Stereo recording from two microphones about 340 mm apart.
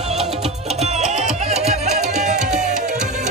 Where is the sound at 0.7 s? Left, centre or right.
Centre.